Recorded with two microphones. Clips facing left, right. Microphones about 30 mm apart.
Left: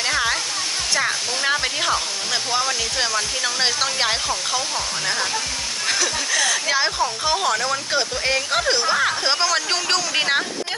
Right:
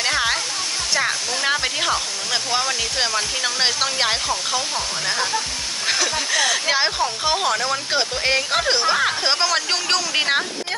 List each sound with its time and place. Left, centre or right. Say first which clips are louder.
0.0 s music: right 1 dB; centre
0.9 s speech: right 1 dB; centre
7.9 s speech: right 2 dB; centre